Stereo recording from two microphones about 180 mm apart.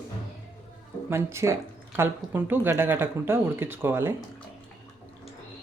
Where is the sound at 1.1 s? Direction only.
15° right (ahead or behind).